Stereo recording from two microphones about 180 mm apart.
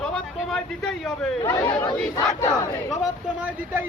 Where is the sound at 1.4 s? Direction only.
15° left (ahead or behind).